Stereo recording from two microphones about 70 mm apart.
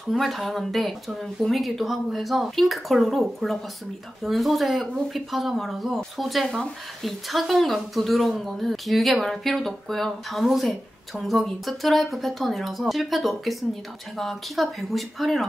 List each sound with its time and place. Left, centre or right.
0.1 s speech: centre